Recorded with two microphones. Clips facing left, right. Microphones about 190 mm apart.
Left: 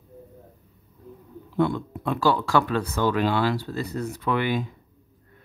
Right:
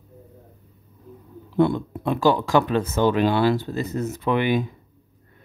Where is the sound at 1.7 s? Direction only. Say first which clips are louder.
Right 3 dB; 20° right (ahead or behind).